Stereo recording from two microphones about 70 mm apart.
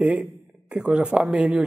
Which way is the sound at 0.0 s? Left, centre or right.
Centre.